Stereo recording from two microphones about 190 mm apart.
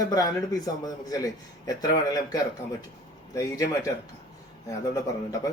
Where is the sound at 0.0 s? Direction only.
20° left (ahead or behind).